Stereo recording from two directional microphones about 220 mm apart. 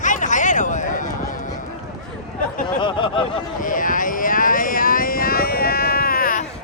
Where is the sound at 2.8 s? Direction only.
20° left (ahead or behind).